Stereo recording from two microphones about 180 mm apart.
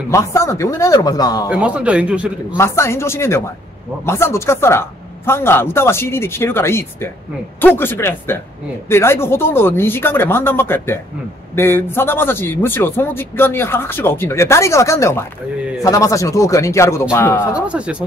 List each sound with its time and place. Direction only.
0.1 s a man's voice: 15° left (ahead or behind)
1.5 s speech: 5° right (ahead or behind)
2.5 s a man's voice: 15° left (ahead or behind)
17.6 s speech: 5° right (ahead or behind)